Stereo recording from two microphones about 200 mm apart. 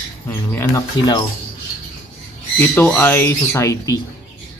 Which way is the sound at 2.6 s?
10° left (ahead or behind).